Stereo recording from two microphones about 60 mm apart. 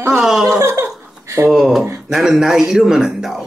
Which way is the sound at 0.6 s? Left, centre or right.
Right.